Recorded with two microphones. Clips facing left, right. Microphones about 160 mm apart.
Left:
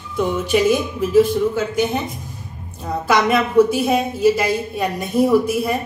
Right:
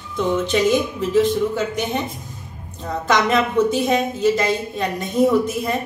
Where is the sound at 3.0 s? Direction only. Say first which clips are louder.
Left 1 dB; 10° left (ahead or behind).